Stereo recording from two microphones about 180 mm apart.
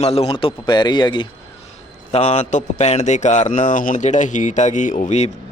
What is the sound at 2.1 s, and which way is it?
Speech, 40° left (ahead or behind).